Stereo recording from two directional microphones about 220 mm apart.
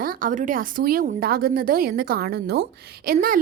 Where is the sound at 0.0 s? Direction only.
40° right (ahead or behind).